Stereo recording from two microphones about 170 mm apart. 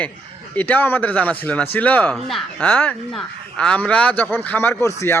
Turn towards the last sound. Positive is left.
turn(degrees=15)  # may be behind; listen again after turning